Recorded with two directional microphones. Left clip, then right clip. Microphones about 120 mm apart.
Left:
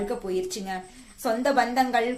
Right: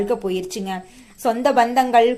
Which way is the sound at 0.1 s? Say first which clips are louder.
Right 6 dB; 45° right (ahead or behind).